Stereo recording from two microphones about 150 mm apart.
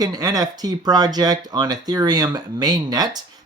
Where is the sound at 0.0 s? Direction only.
25° right (ahead or behind).